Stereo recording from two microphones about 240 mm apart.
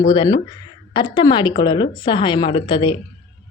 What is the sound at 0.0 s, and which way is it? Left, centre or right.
A woman's voice, centre.